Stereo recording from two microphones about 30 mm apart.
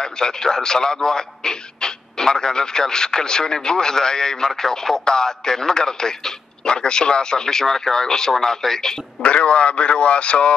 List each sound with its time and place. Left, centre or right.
0.0 s speech: left
9.2 s speech: left